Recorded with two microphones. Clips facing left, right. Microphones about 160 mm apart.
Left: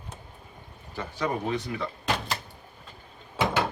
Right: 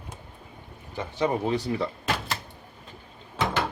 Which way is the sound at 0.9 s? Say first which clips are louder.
Right 4 dB; 30° right (ahead or behind).